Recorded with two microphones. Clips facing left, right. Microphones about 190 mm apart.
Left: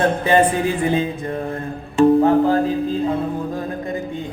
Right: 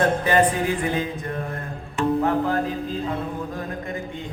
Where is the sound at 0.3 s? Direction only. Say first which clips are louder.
Left 4 dB; 25° left (ahead or behind).